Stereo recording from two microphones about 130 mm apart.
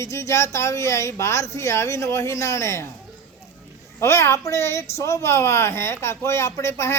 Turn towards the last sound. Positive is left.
turn(degrees=20)  # may be behind; listen again after turning